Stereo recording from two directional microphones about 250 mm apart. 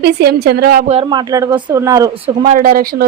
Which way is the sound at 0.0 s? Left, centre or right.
Right.